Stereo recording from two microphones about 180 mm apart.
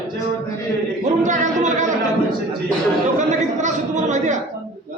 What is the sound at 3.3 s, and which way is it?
Speech, 40° right (ahead or behind).